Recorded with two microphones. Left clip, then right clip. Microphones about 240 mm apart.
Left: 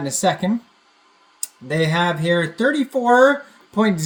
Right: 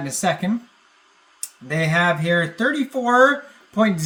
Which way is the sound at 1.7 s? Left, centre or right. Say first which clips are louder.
Even; centre.